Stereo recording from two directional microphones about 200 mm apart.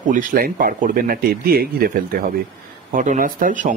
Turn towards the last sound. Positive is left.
turn(degrees=-40)  # may be behind; listen again after turning